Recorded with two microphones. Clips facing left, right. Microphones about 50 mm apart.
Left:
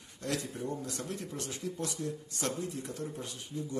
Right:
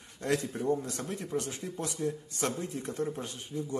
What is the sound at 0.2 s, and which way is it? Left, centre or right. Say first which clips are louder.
Speech: right 5 dB; right.